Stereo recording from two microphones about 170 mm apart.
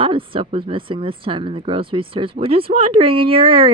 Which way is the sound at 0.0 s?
30° right (ahead or behind).